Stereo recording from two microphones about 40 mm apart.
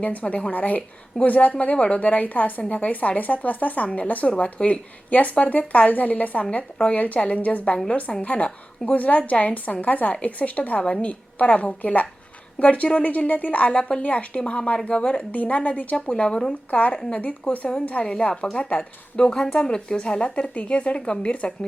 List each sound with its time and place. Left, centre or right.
0.0 s a woman's voice: left
16.0 s speech: left